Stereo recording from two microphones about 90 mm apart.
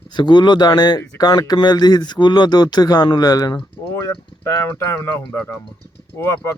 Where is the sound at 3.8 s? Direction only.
30° left (ahead or behind).